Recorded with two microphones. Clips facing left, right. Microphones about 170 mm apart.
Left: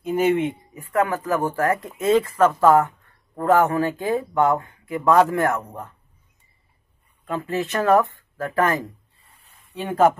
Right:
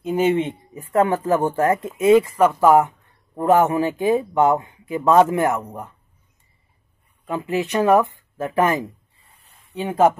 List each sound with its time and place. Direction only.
0.0 s speech: 20° right (ahead or behind)
7.2 s speech: 15° right (ahead or behind)